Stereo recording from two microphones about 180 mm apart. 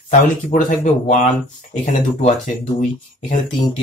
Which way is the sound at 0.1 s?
45° left (ahead or behind).